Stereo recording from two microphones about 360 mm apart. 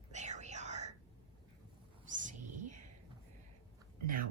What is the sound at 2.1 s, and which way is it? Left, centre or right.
Whispering, right.